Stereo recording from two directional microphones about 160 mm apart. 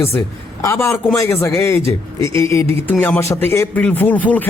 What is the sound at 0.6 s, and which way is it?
A man's voice, 15° left (ahead or behind).